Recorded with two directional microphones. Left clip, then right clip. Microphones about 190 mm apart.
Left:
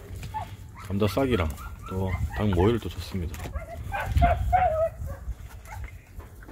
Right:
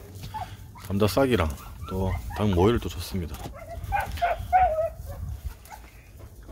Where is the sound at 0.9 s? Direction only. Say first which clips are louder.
Right 3 dB; 10° right (ahead or behind).